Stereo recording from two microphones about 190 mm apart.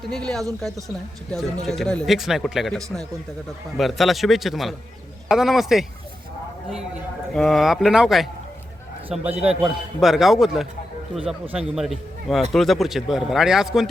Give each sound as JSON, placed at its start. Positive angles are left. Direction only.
{"t": 0.0, "sound": "a man's voice", "side_deg": 0}
{"t": 7.3, "sound": "a man's voice", "side_deg": 0}